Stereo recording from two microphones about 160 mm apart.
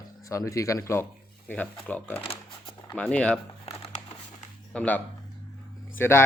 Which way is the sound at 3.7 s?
40° left (ahead or behind).